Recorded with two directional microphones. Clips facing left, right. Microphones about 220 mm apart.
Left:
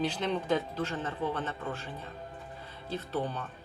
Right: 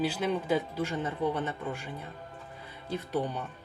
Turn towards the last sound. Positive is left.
turn(degrees=-15)  # may be behind; listen again after turning